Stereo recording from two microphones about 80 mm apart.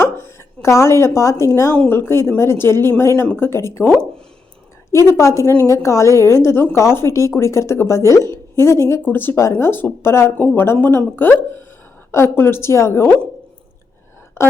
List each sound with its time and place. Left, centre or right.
0.0 s a woman's voice: left
4.9 s speech: left
9.1 s speech: left
14.4 s speech: left